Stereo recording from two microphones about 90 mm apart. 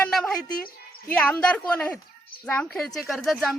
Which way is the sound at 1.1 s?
15° left (ahead or behind).